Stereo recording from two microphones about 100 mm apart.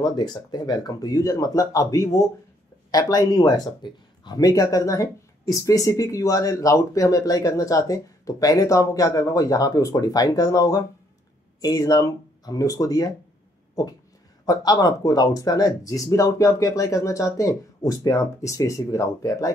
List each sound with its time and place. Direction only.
0.0 s speech: 45° left (ahead or behind)